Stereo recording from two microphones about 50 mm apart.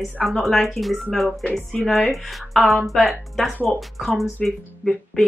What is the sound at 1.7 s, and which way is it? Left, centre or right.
Speech, centre.